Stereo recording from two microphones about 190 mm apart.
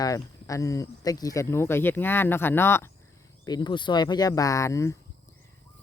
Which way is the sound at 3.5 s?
25° left (ahead or behind).